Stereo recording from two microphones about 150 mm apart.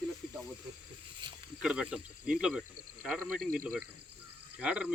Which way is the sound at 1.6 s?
5° right (ahead or behind).